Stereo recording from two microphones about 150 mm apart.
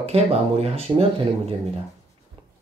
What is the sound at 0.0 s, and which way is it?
Speech, 45° right (ahead or behind).